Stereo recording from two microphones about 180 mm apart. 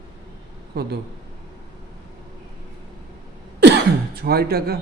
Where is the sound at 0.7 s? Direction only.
60° right (ahead or behind).